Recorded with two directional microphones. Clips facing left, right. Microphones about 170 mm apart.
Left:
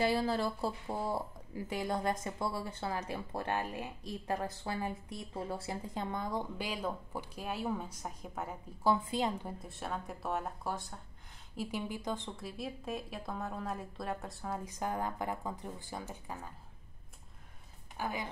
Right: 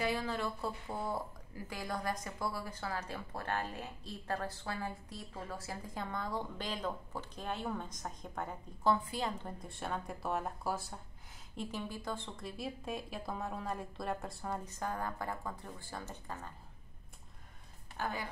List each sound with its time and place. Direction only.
0.0 s speech: 35° left (ahead or behind); by 8.9 s 5° left (ahead or behind)
8.9 s speech: 20° left (ahead or behind)
9.5 s speech: centre (ahead or behind)
11.9 s speech: 15° left (ahead or behind)
12.4 s speech: centre (ahead or behind)
14.6 s speech: 15° left (ahead or behind)
17.9 s speech: 15° left (ahead or behind)